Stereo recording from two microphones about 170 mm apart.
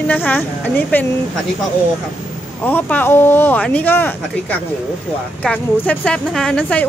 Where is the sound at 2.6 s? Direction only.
10° left (ahead or behind).